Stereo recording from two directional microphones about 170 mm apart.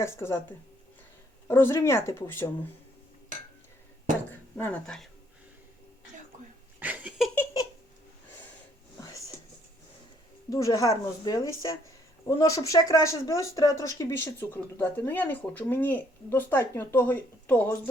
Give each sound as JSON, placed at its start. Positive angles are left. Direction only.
{"t": 0.0, "sound": "speech", "side_deg": 15}
{"t": 1.5, "sound": "speech", "side_deg": 15}
{"t": 4.5, "sound": "speech", "side_deg": 10}
{"t": 6.7, "sound": "a sound", "side_deg": -10}
{"t": 7.3, "sound": "a sound", "side_deg": 20}
{"t": 10.5, "sound": "speech", "side_deg": 20}